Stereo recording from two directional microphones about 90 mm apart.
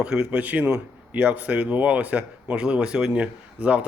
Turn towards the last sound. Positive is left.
turn(degrees=-15)  # may be behind; listen again after turning